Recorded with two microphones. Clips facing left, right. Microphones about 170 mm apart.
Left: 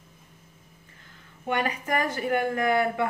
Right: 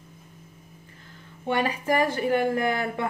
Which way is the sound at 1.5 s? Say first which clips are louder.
Right 3 dB; 30° right (ahead or behind).